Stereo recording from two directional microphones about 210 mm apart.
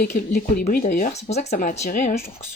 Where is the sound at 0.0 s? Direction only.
45° left (ahead or behind).